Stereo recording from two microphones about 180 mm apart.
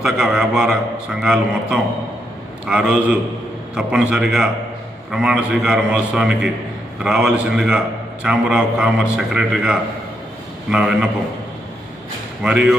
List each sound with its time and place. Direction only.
0.0 s a man's voice: 5° right (ahead or behind)
12.4 s a man's voice: 5° right (ahead or behind)